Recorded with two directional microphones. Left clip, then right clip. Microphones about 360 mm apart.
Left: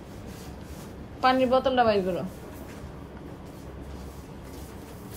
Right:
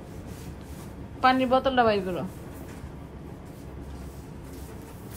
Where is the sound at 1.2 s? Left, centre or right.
Centre.